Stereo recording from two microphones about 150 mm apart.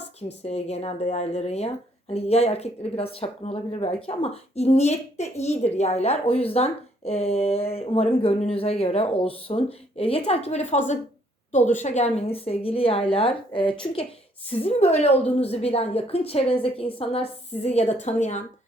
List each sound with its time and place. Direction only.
0.2 s a woman's voice: 45° left (ahead or behind)